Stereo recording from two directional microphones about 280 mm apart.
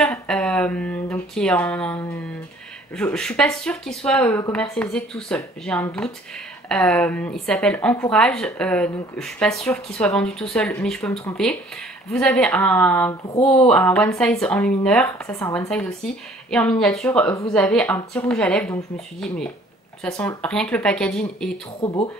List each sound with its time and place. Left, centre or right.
0.0 s speech: centre
13.3 s speech: left
13.7 s speech: centre
21.8 s speech: centre